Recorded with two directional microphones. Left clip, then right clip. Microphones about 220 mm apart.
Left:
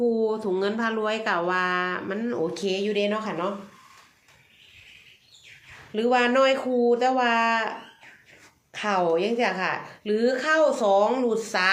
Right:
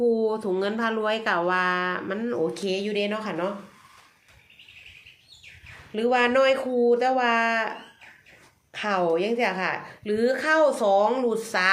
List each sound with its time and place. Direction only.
0.0 s speech: 10° right (ahead or behind)
5.9 s a woman's voice: 5° right (ahead or behind)